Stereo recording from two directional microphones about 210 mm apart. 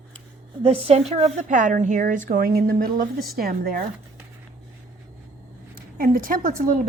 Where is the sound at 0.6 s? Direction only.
30° right (ahead or behind); by 3.8 s 45° right (ahead or behind).